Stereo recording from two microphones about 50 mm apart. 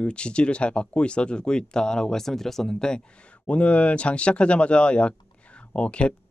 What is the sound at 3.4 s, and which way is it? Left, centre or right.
Speech, left.